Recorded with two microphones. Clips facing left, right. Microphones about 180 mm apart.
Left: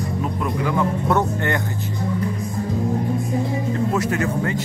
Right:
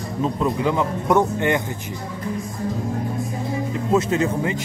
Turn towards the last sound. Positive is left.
turn(degrees=-20)  # may be behind; listen again after turning